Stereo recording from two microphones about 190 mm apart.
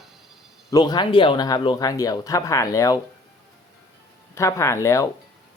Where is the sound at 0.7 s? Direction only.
25° left (ahead or behind).